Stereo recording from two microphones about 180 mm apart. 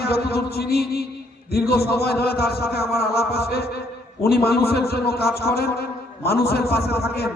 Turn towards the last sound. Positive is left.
turn(degrees=60)  # may be behind; listen again after turning